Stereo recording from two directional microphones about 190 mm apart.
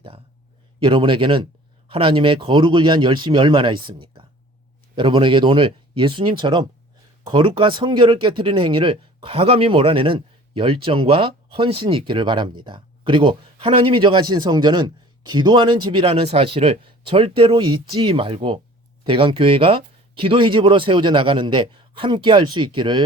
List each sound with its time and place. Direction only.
0.8 s speech: 25° right (ahead or behind)